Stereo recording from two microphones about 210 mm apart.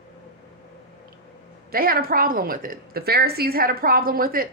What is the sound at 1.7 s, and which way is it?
Speech, 45° right (ahead or behind).